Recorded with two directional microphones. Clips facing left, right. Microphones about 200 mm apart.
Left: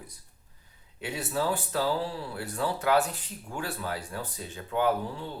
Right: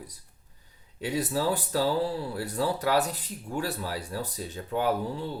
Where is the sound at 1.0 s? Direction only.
35° right (ahead or behind).